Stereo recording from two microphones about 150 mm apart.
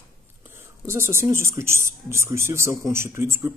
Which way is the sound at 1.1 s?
15° right (ahead or behind).